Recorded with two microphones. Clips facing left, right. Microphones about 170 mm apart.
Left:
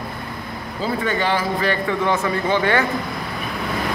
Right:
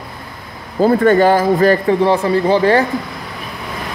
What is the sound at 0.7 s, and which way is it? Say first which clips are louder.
A man's voice: right 12 dB; 50° right (ahead or behind).